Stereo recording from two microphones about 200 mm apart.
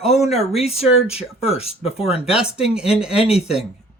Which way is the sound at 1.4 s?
30° left (ahead or behind).